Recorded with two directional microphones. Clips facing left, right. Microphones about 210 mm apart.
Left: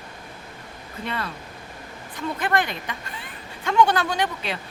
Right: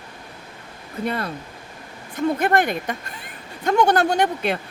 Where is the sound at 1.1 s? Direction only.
40° right (ahead or behind).